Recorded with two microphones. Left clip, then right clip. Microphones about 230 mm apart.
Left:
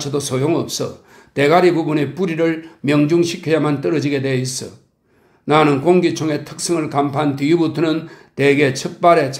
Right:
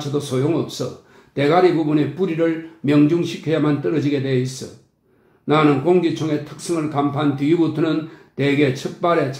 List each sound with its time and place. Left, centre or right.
0.0 s speech: left
5.5 s speech: left